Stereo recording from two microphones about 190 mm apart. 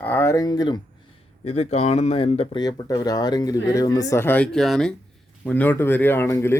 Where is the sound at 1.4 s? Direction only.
35° left (ahead or behind).